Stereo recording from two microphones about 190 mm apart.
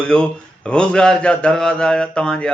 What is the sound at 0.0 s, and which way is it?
A man's voice, 5° left (ahead or behind).